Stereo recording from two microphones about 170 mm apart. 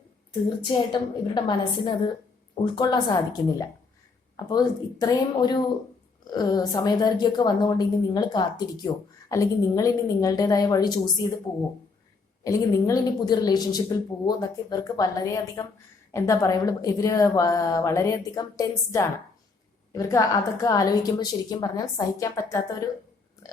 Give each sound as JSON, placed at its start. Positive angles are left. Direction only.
{"t": 0.6, "sound": "a woman's voice", "side_deg": 25}
{"t": 4.4, "sound": "a woman's voice", "side_deg": 20}
{"t": 12.5, "sound": "a woman's voice", "side_deg": 20}